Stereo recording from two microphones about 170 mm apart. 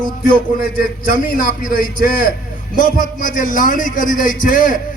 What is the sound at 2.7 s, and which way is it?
A man's voice, 55° left (ahead or behind).